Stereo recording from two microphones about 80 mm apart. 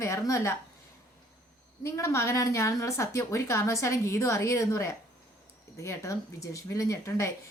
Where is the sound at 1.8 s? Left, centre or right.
Left.